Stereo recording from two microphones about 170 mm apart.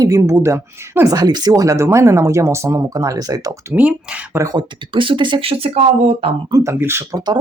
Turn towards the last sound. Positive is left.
turn(degrees=-20)  # may be behind; listen again after turning